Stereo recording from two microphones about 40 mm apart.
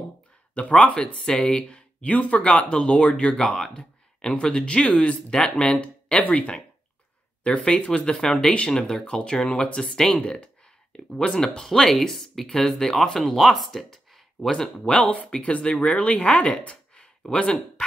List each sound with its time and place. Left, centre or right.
0.6 s speech: left
0.9 s speech: centre
3.3 s speech: centre
3.7 s speech: left
7.5 s speech: left
9.2 s speech: left; by 14.5 s centre
14.5 s speech: centre
15.0 s speech: left